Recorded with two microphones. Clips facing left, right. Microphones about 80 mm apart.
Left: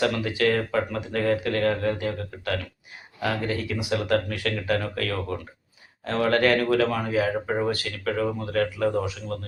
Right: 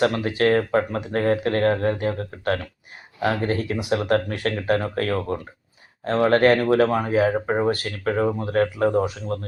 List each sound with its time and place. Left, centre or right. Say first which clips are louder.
0.0 s speech: right 3 dB; right
7.7 s speech: right 4 dB; right